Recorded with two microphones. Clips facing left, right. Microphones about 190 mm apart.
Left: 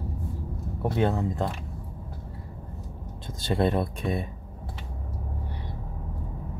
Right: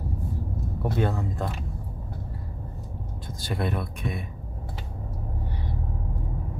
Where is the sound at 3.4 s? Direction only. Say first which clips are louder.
Left 5 dB; 30° left (ahead or behind).